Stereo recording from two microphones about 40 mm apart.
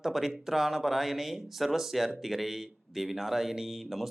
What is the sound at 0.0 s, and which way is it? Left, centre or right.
Speech, centre.